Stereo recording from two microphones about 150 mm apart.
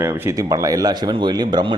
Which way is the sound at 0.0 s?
15° right (ahead or behind).